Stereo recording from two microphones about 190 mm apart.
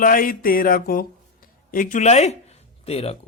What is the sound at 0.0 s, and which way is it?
Music, 45° left (ahead or behind).